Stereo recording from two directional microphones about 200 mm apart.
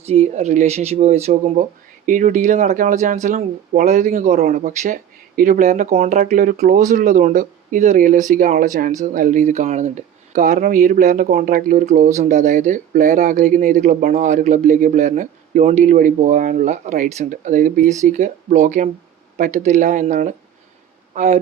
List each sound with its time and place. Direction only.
0.0 s speech: 30° right (ahead or behind)